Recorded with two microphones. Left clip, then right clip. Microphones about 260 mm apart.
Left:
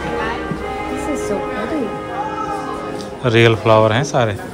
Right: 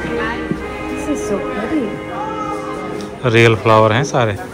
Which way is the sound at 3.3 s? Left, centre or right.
Centre.